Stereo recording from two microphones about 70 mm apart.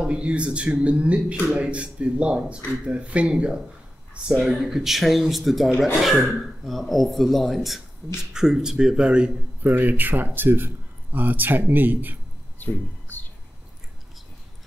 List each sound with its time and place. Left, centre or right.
0.0 s speech: centre
9.6 s a man's voice: right
12.5 s a sound: left